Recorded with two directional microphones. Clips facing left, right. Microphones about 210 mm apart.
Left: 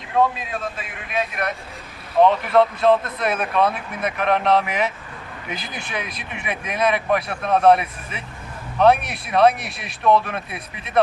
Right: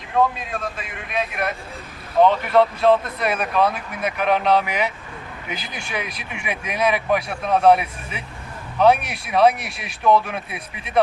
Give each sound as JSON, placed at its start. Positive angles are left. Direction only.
{"t": 0.1, "sound": "speech", "side_deg": 0}